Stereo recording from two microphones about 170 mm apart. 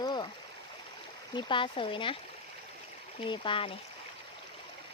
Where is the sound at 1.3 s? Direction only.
30° left (ahead or behind).